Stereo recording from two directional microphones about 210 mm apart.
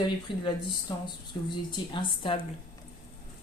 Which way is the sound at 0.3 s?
20° left (ahead or behind).